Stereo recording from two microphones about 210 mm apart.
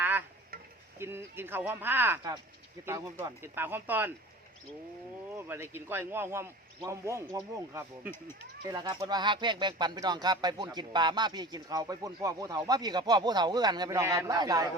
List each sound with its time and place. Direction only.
0.0 s stir: 10° right (ahead or behind)
0.9 s a man's voice: 10° right (ahead or behind)
5.4 s a man's voice: 10° right (ahead or behind)